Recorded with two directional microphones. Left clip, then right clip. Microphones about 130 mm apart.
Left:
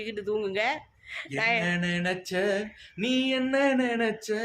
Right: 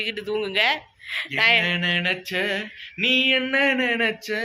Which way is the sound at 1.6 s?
45° left (ahead or behind).